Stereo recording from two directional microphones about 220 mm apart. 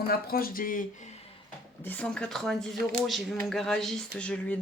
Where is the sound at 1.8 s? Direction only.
5° left (ahead or behind).